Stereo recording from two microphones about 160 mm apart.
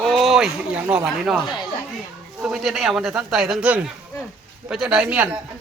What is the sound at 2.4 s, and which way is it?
Speech, 5° right (ahead or behind).